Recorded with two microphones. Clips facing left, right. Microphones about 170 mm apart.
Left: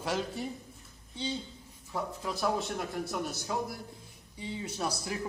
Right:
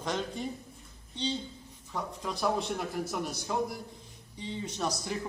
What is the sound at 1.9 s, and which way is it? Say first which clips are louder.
A man's voice: left 1 dB; centre (ahead or behind).